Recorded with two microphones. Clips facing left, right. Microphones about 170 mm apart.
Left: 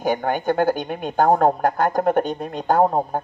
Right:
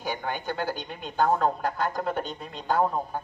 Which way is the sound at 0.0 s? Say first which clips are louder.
Left 10 dB; 50° left (ahead or behind).